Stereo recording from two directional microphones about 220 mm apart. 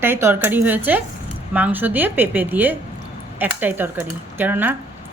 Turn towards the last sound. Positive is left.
turn(degrees=-10)  # may be behind; listen again after turning